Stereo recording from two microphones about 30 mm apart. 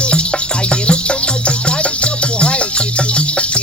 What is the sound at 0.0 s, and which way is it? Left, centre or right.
Music, left.